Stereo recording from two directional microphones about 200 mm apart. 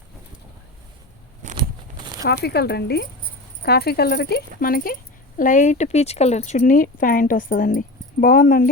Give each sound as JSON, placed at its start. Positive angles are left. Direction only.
{"t": 2.2, "sound": "speech", "side_deg": 50}